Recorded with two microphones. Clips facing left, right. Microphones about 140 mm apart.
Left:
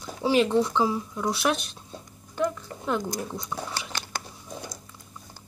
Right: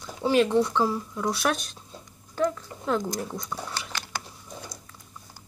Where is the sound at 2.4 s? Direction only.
5° left (ahead or behind).